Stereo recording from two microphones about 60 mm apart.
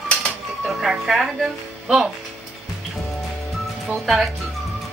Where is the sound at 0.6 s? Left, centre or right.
Centre.